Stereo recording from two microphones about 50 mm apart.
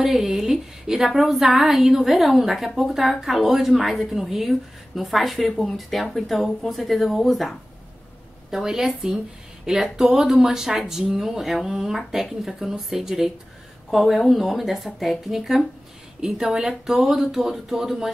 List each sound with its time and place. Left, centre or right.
0.0 s a woman's voice: centre